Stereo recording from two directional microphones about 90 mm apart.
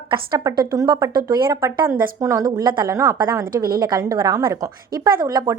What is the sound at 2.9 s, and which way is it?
A woman's voice, 35° right (ahead or behind).